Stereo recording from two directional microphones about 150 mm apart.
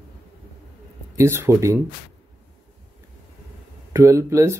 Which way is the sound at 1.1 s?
20° right (ahead or behind).